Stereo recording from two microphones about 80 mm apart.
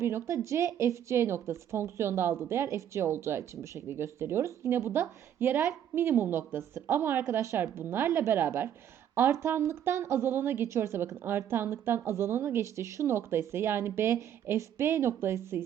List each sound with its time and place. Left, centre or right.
0.0 s a woman's voice: right